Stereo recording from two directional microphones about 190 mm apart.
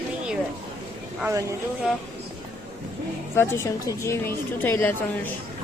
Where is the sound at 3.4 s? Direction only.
15° left (ahead or behind).